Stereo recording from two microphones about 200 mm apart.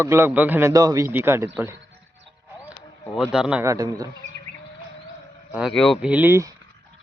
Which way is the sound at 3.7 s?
15° right (ahead or behind).